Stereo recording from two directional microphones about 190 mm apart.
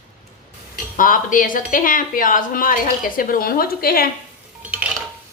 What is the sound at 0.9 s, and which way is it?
A woman's voice, 45° left (ahead or behind).